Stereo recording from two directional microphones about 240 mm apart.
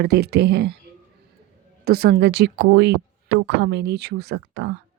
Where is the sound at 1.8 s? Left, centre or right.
Right.